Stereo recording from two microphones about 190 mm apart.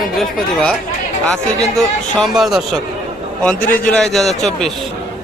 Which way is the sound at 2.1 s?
Centre (ahead or behind).